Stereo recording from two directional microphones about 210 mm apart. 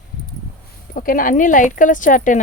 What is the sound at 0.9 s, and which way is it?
A woman's voice, 40° left (ahead or behind).